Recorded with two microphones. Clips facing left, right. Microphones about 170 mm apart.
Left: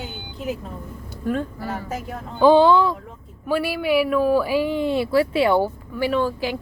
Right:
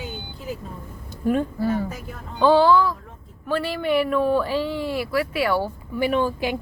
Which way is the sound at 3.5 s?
10° left (ahead or behind).